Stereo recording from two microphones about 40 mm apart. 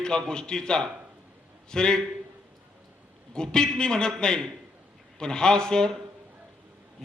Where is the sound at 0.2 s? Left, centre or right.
Centre.